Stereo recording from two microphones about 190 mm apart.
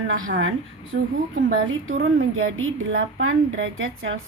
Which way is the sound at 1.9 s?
90° right.